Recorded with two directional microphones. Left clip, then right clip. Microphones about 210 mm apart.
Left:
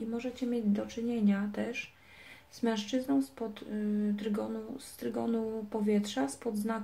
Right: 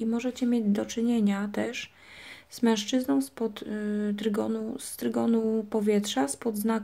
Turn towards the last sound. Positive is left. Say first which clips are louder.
# right 6 dB
turn(degrees=-45)  # may be behind; listen again after turning